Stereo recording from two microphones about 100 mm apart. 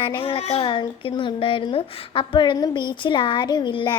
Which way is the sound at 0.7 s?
50° left (ahead or behind).